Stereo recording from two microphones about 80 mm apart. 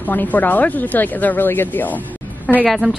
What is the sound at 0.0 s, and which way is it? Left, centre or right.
Speech, left.